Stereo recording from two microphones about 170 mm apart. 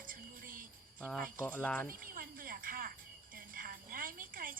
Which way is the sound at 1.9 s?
55° right (ahead or behind).